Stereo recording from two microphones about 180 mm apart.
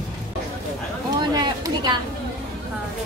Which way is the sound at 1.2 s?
25° right (ahead or behind).